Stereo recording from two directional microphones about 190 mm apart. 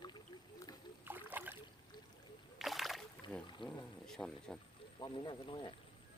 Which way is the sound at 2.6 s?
Centre (ahead or behind).